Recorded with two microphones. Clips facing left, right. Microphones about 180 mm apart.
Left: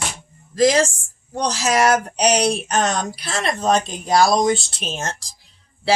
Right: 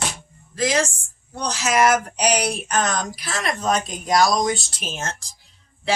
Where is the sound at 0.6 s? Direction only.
35° left (ahead or behind).